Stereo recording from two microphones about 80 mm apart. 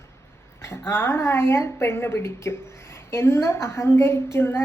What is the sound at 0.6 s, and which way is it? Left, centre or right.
Speech, left.